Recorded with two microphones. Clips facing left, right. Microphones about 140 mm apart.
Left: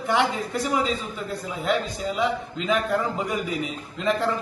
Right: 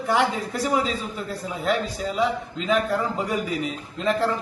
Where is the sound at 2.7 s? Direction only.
Centre (ahead or behind).